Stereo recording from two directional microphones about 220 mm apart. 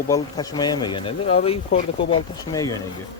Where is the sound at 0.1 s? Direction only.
15° left (ahead or behind).